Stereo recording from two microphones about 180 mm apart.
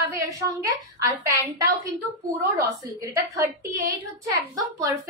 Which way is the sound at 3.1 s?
20° right (ahead or behind).